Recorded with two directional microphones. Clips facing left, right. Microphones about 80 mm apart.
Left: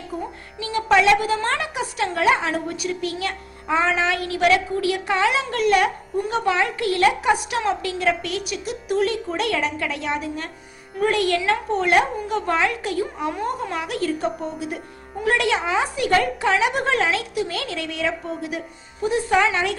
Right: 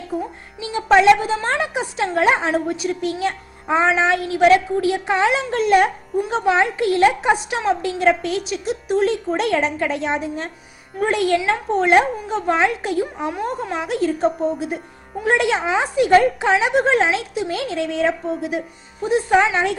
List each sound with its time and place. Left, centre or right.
0.6 s a woman's voice: centre